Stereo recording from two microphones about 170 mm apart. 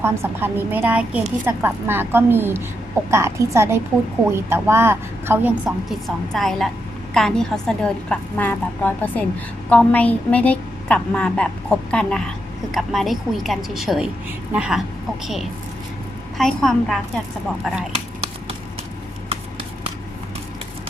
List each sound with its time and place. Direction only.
0.0 s a woman's voice: 15° right (ahead or behind)
6.3 s a woman's voice: centre (ahead or behind)
16.4 s a woman's voice: centre (ahead or behind)
17.9 s a sound: 40° right (ahead or behind)